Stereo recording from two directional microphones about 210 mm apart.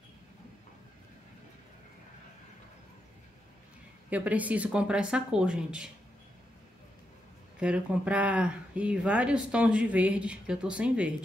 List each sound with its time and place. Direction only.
4.1 s speech: 5° right (ahead or behind)
7.5 s speech: 5° right (ahead or behind)